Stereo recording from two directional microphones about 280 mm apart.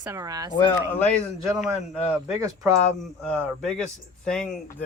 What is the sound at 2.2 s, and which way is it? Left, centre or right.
Speech, centre.